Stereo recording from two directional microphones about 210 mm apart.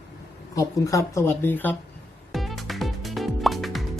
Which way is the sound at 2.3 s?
Centre (ahead or behind).